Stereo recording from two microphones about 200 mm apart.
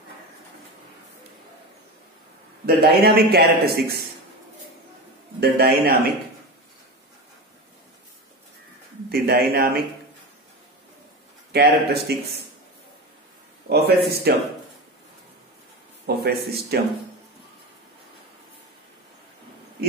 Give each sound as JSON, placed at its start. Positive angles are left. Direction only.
{"t": 2.6, "sound": "a man's voice", "side_deg": -50}
{"t": 5.4, "sound": "a man's voice", "side_deg": -50}
{"t": 9.1, "sound": "a man's voice", "side_deg": -50}
{"t": 11.5, "sound": "a man's voice", "side_deg": -55}
{"t": 13.7, "sound": "a man's voice", "side_deg": -55}
{"t": 16.2, "sound": "a man's voice", "side_deg": -50}